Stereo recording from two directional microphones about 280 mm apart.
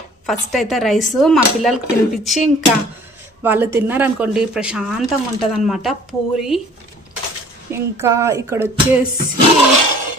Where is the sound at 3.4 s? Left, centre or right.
Centre.